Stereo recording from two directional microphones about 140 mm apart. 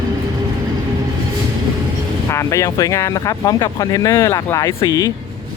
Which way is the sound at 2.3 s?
20° left (ahead or behind).